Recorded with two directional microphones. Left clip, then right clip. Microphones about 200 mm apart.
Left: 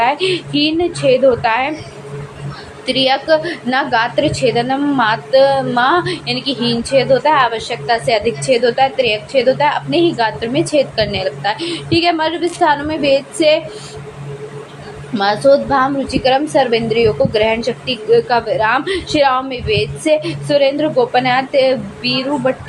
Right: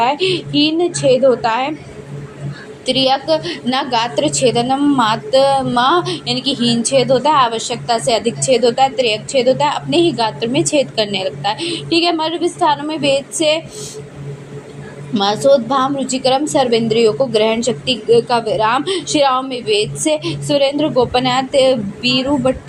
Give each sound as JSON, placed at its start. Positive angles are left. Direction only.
{"t": 0.0, "sound": "a woman's voice", "side_deg": -20}
{"t": 2.8, "sound": "a woman's voice", "side_deg": -20}
{"t": 15.1, "sound": "a woman's voice", "side_deg": -20}